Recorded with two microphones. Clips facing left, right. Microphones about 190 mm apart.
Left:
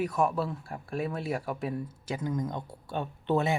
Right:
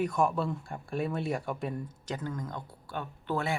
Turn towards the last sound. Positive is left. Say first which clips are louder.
# left 5 dB
turn(degrees=20)  # may be behind; listen again after turning